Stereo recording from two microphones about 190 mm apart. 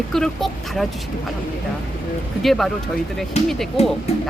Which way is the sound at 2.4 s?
Centre (ahead or behind).